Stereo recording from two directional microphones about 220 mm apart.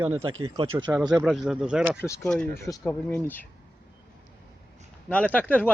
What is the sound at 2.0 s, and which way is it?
Speech, 10° left (ahead or behind).